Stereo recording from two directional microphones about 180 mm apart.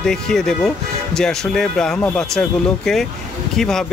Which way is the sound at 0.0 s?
Centre (ahead or behind).